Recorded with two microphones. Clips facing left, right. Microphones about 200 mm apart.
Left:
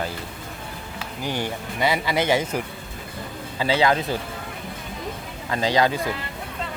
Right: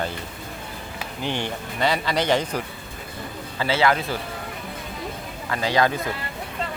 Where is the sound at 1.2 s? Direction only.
10° left (ahead or behind).